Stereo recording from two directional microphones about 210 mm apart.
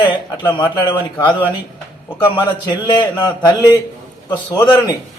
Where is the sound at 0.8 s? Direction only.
20° left (ahead or behind).